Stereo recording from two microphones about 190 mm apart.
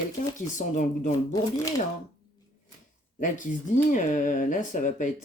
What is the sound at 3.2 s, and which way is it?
Speech, 40° left (ahead or behind).